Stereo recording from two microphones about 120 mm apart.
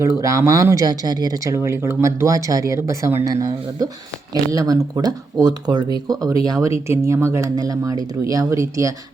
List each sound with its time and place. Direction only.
0.2 s speech: 25° right (ahead or behind)